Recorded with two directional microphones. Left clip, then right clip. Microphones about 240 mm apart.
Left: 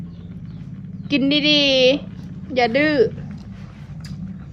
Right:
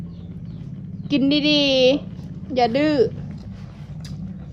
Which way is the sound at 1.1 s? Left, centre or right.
Centre.